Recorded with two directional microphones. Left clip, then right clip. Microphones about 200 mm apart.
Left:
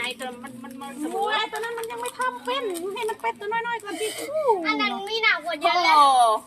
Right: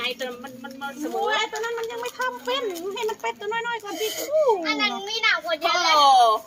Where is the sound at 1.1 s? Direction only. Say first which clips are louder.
Right 1 dB; centre (ahead or behind).